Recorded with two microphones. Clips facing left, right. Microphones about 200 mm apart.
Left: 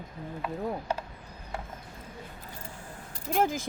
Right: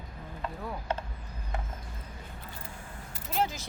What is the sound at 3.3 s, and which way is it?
Speech, 50° left (ahead or behind).